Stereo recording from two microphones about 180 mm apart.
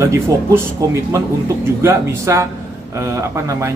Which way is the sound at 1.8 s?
15° right (ahead or behind).